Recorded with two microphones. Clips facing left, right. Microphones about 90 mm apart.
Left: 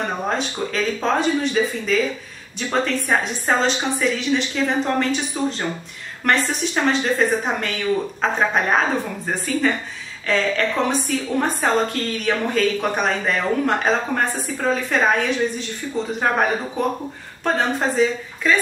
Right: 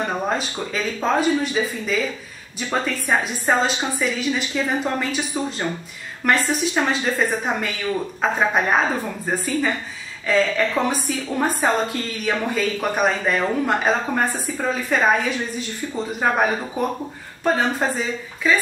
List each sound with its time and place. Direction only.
0.3 s a woman's voice: 5° right (ahead or behind)
6.2 s a woman's voice: 5° right (ahead or behind)
17.4 s a woman's voice: 5° right (ahead or behind)